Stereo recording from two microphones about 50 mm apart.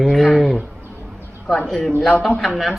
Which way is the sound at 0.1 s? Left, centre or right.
Centre.